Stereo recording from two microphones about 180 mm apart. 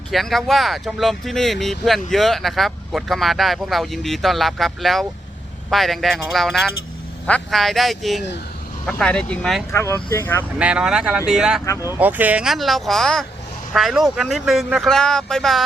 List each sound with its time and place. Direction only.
0.1 s speech: centre (ahead or behind)
9.7 s speech: 15° left (ahead or behind)
10.6 s speech: 5° right (ahead or behind)